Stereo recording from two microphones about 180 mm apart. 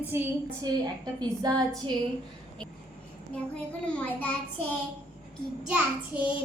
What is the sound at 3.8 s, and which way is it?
Speech, 5° left (ahead or behind).